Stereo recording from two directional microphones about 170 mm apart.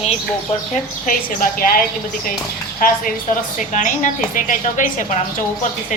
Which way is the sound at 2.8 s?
55° left (ahead or behind).